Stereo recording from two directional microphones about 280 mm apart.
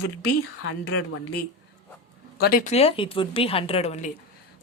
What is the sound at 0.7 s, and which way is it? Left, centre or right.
Speech, left.